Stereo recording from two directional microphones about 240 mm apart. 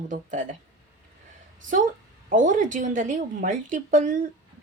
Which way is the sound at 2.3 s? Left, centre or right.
Right.